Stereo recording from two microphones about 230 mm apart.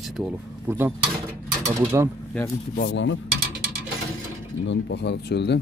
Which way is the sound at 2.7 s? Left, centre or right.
Left.